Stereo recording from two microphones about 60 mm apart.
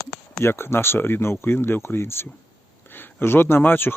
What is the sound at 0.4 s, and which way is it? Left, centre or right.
Speech, left.